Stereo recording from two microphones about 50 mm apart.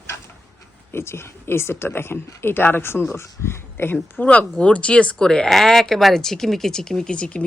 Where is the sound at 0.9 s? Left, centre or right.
Left.